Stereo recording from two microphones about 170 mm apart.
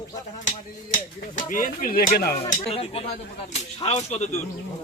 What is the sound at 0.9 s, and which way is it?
Speech, 50° left (ahead or behind).